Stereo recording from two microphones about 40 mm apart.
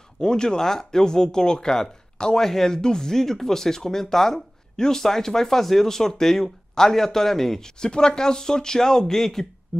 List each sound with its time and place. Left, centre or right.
0.2 s speech: centre